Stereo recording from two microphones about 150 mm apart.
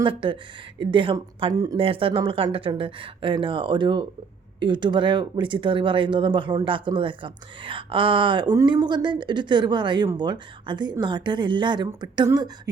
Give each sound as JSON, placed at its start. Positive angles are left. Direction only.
{"t": 0.0, "sound": "speech", "side_deg": -35}